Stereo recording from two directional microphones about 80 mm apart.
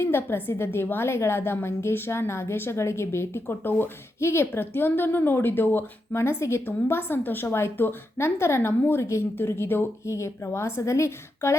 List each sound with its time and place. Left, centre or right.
0.0 s a woman's voice: left